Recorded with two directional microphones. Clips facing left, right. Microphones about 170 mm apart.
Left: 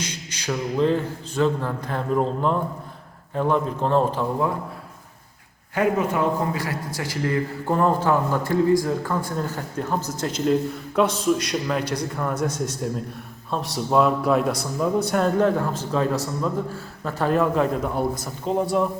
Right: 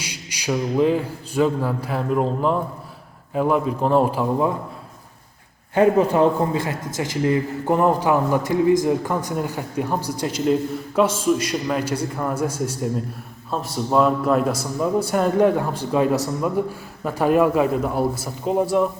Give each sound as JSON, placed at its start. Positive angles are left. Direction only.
{"t": 0.0, "sound": "a man's voice", "side_deg": -10}
{"t": 5.7, "sound": "a man's voice", "side_deg": -30}